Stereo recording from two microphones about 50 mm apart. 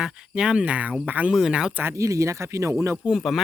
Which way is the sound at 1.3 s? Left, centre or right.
Centre.